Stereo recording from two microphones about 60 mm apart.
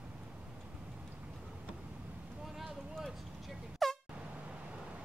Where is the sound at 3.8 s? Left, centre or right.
Centre.